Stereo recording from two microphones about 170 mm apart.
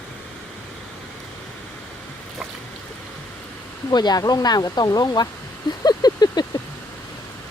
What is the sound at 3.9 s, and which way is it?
Speech, 25° left (ahead or behind).